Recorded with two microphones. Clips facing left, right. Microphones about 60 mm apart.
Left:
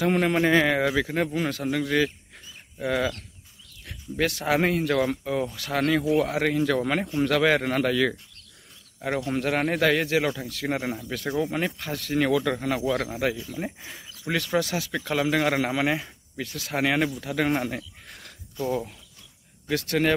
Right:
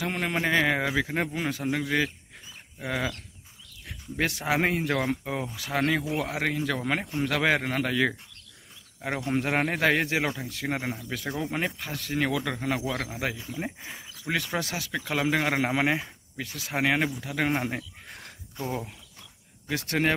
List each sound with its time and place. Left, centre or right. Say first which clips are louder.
0.0 s a man's voice: left 6 dB; centre
9.2 s a man's voice: even; right
10.6 s speech: left 3 dB; centre
13.4 s a man's voice: left 2 dB; centre
15.2 s a man's voice: left 1 dB; centre
16.3 s a man's voice: left 2 dB; centre
17.6 s a sound: even; right